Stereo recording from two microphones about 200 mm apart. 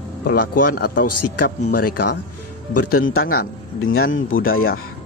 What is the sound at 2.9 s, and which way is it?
Speech, 90° left.